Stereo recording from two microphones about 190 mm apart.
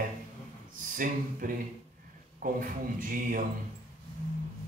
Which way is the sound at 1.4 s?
45° right (ahead or behind).